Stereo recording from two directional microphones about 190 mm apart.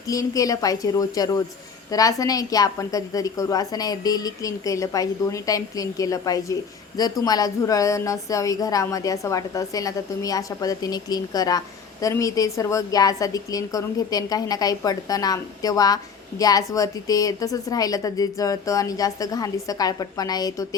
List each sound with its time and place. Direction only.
0.1 s a woman's voice: 20° left (ahead or behind)